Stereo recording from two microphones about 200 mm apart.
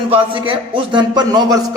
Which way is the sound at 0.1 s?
25° right (ahead or behind).